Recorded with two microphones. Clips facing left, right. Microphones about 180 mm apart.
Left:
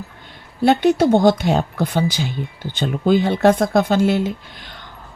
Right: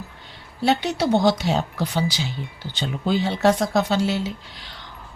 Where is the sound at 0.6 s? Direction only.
55° left (ahead or behind).